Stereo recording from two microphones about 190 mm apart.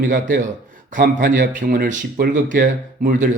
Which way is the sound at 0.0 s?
45° right (ahead or behind).